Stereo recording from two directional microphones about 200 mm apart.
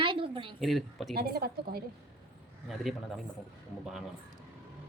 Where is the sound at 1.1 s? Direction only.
50° right (ahead or behind).